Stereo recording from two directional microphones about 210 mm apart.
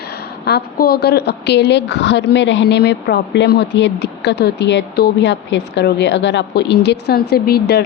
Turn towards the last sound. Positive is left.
turn(degrees=50)  # may be behind; listen again after turning